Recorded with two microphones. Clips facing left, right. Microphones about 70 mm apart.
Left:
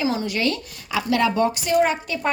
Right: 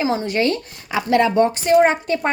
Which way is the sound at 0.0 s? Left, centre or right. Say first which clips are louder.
Right 3 dB; right.